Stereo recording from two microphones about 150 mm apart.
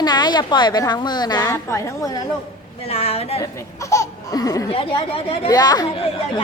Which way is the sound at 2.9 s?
40° left (ahead or behind).